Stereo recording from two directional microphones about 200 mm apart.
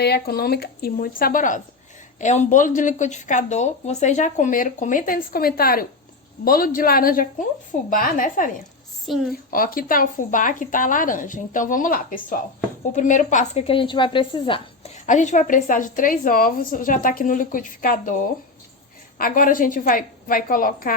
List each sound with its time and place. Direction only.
0.0 s a woman's voice: 55° left (ahead or behind)
9.1 s a woman's voice: centre (ahead or behind)
9.5 s a woman's voice: 45° left (ahead or behind); by 14.9 s 25° left (ahead or behind)
15.0 s speech: 35° left (ahead or behind)
19.2 s a woman's voice: 45° left (ahead or behind)